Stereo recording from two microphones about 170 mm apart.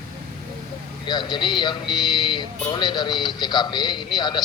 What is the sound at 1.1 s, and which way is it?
Speech, 25° left (ahead or behind).